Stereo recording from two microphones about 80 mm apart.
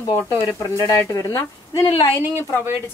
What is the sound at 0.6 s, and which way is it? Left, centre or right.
Speech, left.